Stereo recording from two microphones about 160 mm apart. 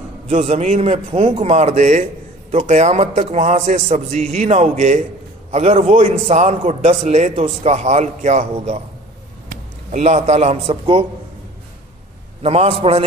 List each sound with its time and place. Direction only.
0.3 s a man's voice: 40° right (ahead or behind)
12.4 s a man's voice: 40° right (ahead or behind)